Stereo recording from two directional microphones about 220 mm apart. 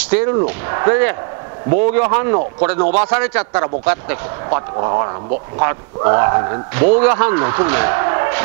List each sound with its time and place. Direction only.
0.1 s a man's voice: 10° right (ahead or behind)